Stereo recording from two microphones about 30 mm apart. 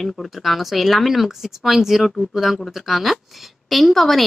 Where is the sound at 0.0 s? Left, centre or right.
Centre.